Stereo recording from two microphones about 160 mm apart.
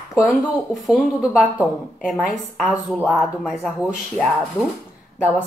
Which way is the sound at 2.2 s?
10° left (ahead or behind).